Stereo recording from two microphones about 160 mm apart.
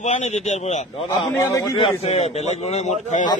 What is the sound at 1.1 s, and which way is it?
Speech, 30° left (ahead or behind).